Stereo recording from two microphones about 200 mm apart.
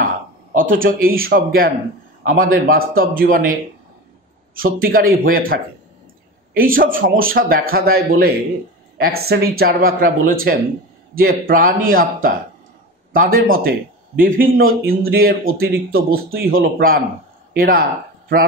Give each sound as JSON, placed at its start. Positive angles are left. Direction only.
{"t": 0.6, "sound": "speech", "side_deg": -45}
{"t": 4.6, "sound": "speech", "side_deg": -45}